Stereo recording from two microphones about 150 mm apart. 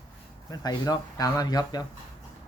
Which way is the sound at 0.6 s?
25° left (ahead or behind).